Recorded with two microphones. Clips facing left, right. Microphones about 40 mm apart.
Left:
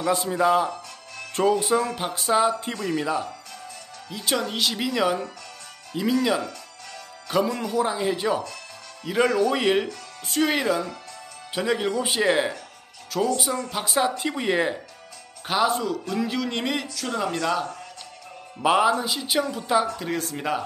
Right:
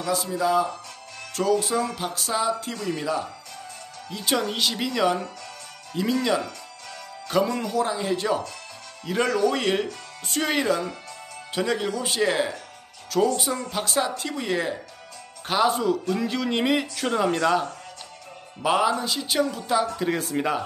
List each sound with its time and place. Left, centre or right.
0.0 s speech: left
2.9 s speech: centre
4.1 s speech: centre
7.2 s speech: centre
13.1 s speech: centre
15.4 s speech: centre
16.9 s a man's voice: right
17.2 s speech: centre
18.6 s speech: centre
20.0 s speech: centre